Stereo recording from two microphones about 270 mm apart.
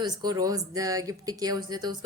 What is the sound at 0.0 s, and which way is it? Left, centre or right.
Speech, centre.